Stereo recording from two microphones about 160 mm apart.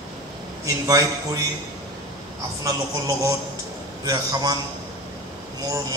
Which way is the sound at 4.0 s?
20° right (ahead or behind).